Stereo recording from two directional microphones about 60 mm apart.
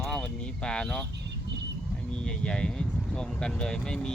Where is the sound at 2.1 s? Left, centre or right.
Centre.